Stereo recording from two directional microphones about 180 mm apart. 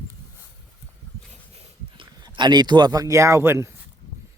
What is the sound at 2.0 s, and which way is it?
Speech, 25° right (ahead or behind).